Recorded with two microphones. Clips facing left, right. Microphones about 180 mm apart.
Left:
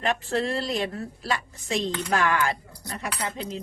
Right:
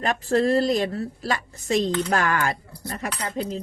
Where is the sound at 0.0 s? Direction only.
40° right (ahead or behind).